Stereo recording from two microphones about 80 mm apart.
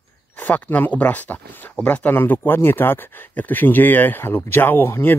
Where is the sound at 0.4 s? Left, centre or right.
Left.